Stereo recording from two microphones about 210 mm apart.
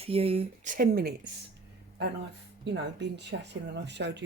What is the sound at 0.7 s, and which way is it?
Speech, 45° right (ahead or behind).